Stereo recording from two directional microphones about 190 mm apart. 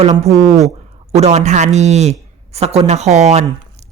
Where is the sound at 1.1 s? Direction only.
35° right (ahead or behind).